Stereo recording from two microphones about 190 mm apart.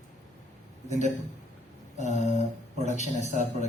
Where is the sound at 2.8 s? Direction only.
40° left (ahead or behind).